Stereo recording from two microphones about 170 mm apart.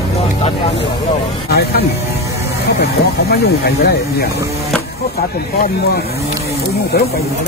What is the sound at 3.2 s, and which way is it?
Speech, 65° left (ahead or behind).